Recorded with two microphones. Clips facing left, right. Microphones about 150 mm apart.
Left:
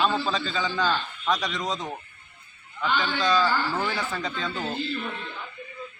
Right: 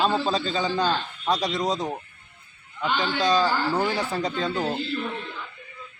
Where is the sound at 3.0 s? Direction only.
35° right (ahead or behind).